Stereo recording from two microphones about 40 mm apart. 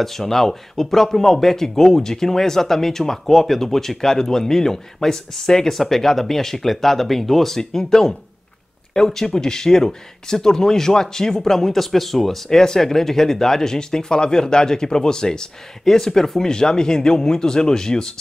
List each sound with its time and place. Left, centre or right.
0.0 s speech: centre